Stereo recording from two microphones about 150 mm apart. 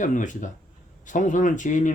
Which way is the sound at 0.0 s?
55° left (ahead or behind).